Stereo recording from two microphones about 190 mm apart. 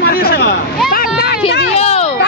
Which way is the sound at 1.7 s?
35° left (ahead or behind).